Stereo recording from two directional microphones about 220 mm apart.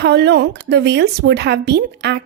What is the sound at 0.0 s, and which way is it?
Speech, 50° right (ahead or behind).